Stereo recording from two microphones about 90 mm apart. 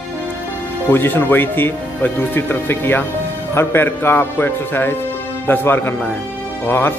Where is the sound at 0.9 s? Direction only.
25° left (ahead or behind).